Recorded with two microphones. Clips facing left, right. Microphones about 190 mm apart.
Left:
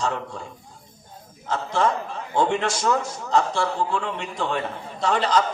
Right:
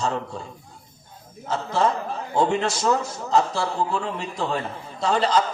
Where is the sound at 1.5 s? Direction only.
30° right (ahead or behind).